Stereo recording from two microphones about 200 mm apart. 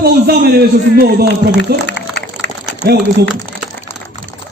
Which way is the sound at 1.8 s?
60° left (ahead or behind).